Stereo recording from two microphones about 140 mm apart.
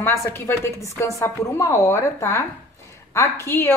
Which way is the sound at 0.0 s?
15° left (ahead or behind).